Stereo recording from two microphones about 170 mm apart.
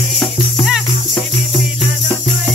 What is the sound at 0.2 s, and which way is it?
Music, 5° right (ahead or behind).